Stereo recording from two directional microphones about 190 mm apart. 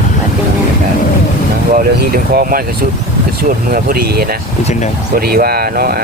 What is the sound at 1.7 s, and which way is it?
Speech, 50° right (ahead or behind).